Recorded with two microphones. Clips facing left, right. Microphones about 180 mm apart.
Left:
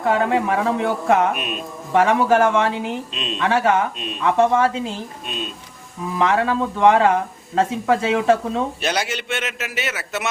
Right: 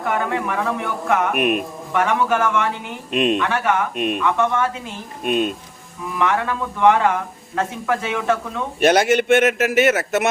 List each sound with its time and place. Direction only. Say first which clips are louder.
0.0 s speech: left 4 dB; 30° left (ahead or behind)
1.3 s speech: right 7 dB; 60° right (ahead or behind)
1.9 s speech: left 4 dB; 30° left (ahead or behind)
3.1 s speech: right 11 dB; 60° right (ahead or behind)
3.4 s speech: left 2 dB; 30° left (ahead or behind)
3.9 s speech: right 9 dB; 60° right (ahead or behind)
4.2 s speech: left 6 dB; 30° left (ahead or behind)
5.2 s speech: right 16 dB; 55° right (ahead or behind)
6.1 s speech: left 2 dB; 30° left (ahead or behind)
8.8 s a man's voice: right 9 dB; 55° right (ahead or behind)